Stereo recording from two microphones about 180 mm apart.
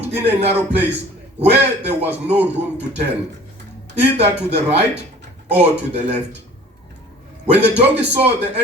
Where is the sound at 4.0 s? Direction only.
35° right (ahead or behind).